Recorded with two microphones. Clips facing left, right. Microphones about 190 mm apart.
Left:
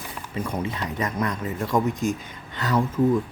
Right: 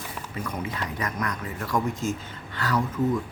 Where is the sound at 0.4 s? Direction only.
25° left (ahead or behind).